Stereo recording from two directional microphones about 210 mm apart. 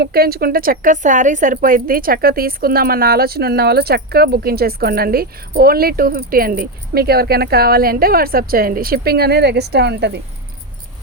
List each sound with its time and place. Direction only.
0.0 s a woman's voice: 45° right (ahead or behind)